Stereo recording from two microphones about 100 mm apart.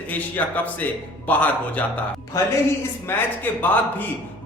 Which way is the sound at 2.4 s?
30° left (ahead or behind).